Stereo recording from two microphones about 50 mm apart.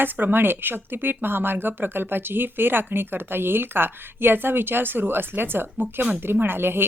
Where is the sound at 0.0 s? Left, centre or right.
Right.